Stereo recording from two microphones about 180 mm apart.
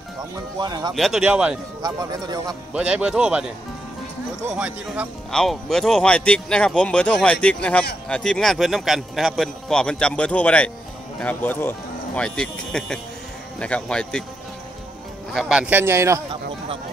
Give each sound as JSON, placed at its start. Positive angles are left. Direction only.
{"t": 0.6, "sound": "speech", "side_deg": -25}
{"t": 0.9, "sound": "speech", "side_deg": 0}
{"t": 1.8, "sound": "speech", "side_deg": -20}
{"t": 2.7, "sound": "speech", "side_deg": -5}
{"t": 4.6, "sound": "speech", "side_deg": -5}
{"t": 15.3, "sound": "speech", "side_deg": 0}